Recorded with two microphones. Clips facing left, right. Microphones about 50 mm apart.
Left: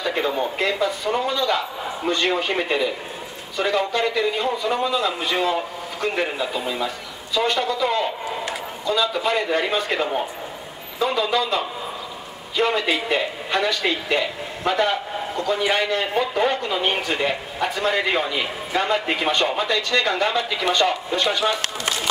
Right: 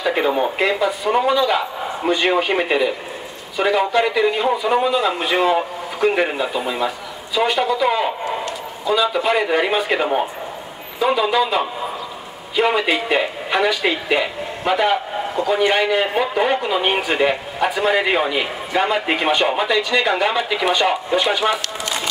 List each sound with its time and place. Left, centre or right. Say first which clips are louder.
0.0 s a man's voice: right 5 dB; centre
7.3 s a man's voice: right 4 dB; centre